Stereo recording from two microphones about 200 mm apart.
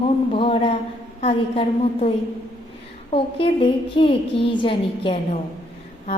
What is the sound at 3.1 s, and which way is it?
A woman's voice, 25° left (ahead or behind).